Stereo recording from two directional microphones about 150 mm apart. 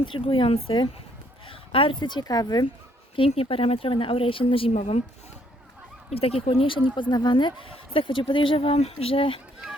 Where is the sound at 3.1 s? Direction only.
40° left (ahead or behind).